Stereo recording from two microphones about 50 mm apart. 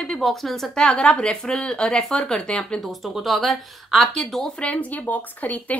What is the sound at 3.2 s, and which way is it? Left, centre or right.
A woman's voice, centre.